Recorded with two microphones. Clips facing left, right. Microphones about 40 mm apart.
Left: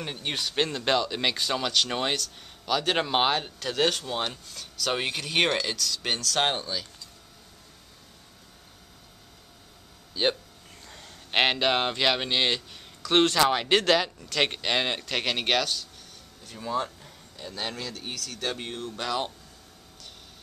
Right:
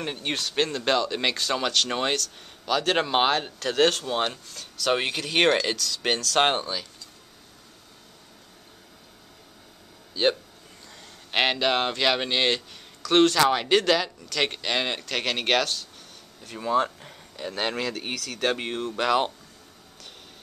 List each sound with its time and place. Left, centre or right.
0.0 s speech: centre
0.3 s a man's voice: centre
6.0 s speech: centre
10.1 s speech: centre
13.0 s a man's voice: centre
16.5 s speech: right
17.4 s speech: right
18.9 s speech: right